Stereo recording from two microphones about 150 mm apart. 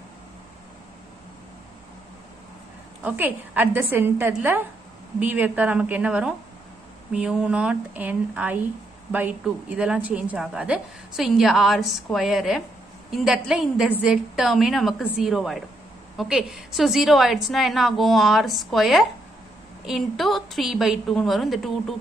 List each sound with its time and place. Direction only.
3.0 s a woman's voice: 10° right (ahead or behind)